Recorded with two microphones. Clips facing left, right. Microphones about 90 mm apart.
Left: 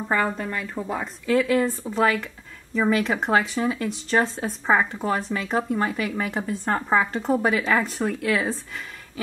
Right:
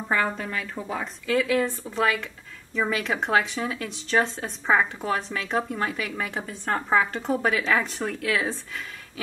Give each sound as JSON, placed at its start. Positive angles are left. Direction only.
{"t": 0.1, "sound": "speech", "side_deg": 0}